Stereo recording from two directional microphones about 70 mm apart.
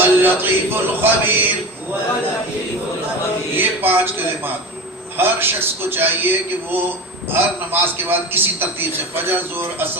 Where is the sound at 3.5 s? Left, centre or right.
Right.